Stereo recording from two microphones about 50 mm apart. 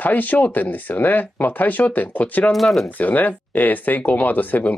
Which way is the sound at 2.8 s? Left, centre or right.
Left.